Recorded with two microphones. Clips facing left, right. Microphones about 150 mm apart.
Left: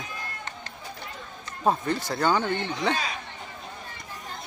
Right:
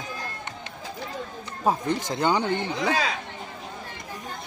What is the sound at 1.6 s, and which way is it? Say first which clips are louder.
Speech: even; 15° right (ahead or behind).